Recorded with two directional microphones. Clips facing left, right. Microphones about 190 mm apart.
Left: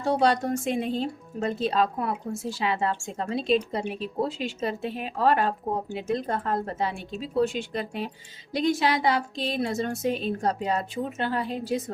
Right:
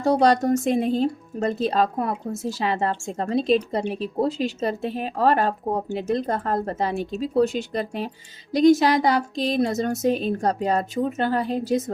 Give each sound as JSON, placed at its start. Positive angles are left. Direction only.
{"t": 0.0, "sound": "speech", "side_deg": -40}